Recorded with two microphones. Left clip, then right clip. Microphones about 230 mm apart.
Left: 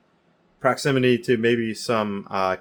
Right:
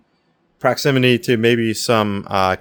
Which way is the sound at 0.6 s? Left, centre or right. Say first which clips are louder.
Right 4 dB; right.